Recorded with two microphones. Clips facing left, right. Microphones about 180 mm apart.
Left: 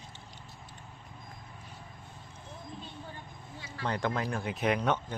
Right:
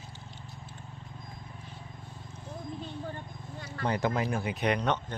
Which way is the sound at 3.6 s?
55° right (ahead or behind).